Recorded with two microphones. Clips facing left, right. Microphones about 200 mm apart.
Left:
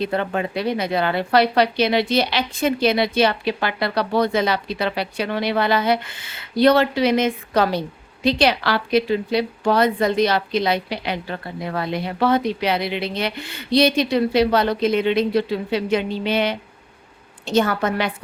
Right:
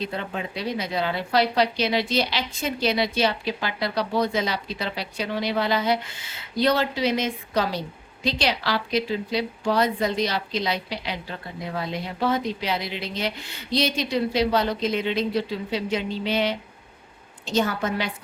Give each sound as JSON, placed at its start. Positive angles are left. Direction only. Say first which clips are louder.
{"t": 0.0, "sound": "a woman's voice", "louder": "left 7 dB", "side_deg": 60}